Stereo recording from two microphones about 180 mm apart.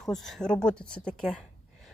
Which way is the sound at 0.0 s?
Centre (ahead or behind).